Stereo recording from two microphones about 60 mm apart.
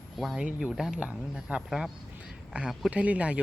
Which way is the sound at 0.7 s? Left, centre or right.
Centre.